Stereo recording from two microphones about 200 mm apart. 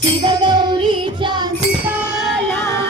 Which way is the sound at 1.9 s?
5° right (ahead or behind).